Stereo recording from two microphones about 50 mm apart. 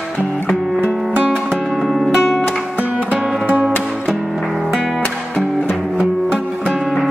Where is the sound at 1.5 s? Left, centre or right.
Centre.